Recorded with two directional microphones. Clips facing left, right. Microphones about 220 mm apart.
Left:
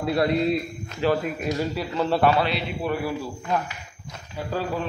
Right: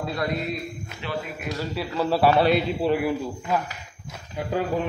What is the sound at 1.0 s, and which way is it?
Speech, 40° left (ahead or behind).